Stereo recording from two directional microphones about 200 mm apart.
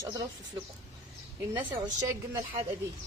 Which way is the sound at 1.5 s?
20° right (ahead or behind).